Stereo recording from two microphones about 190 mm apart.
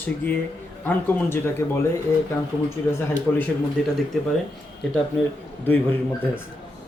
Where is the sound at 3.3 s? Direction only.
10° left (ahead or behind).